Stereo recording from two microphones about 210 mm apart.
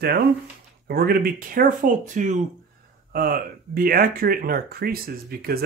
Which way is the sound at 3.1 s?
45° right (ahead or behind).